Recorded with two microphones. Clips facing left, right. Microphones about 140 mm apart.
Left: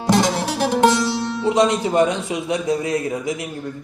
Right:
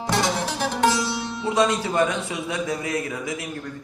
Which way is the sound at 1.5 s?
25° left (ahead or behind).